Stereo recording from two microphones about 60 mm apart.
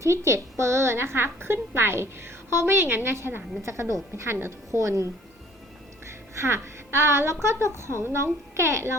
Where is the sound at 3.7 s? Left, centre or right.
Right.